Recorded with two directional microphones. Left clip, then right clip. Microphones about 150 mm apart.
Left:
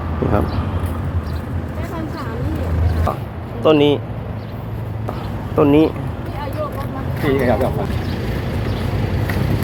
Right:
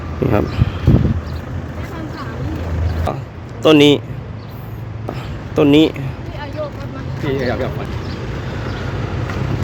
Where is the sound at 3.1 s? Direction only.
40° right (ahead or behind).